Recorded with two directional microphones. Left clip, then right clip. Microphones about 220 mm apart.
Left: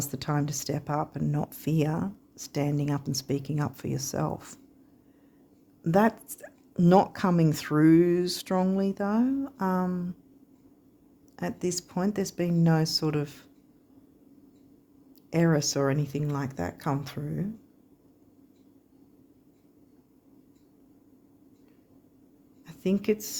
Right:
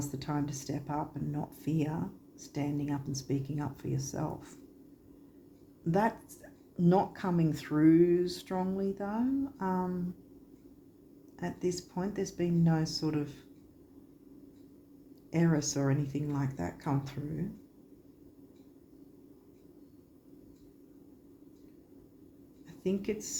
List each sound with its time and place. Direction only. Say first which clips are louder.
0.0 s speech: left 5 dB; 50° left (ahead or behind)
5.8 s speech: left 6 dB; 50° left (ahead or behind)
11.3 s speech: left 3 dB; 50° left (ahead or behind)
15.3 s speech: left 6 dB; 50° left (ahead or behind)
22.6 s speech: left 6 dB; 50° left (ahead or behind)